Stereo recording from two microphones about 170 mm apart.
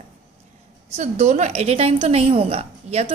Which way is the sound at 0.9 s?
40° right (ahead or behind).